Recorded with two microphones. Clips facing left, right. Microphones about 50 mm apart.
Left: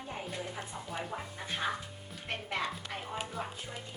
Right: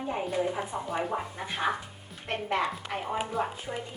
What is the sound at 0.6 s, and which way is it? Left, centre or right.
A woman's voice, right.